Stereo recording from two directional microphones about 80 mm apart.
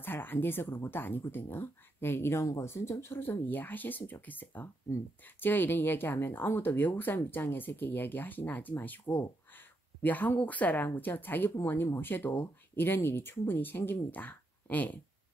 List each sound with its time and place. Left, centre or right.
0.0 s speech: left